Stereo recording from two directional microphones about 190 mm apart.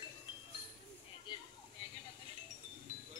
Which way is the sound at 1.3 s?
25° left (ahead or behind).